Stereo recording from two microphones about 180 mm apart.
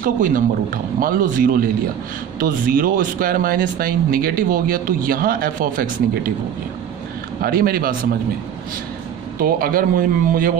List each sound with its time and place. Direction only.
0.0 s speech: 50° right (ahead or behind)
7.4 s a man's voice: 55° right (ahead or behind)
9.4 s speech: 55° right (ahead or behind)